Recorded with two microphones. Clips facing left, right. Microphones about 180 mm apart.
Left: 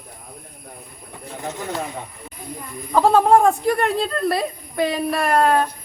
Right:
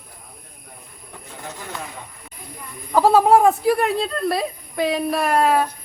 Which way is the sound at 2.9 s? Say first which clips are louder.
Even; 5° right (ahead or behind).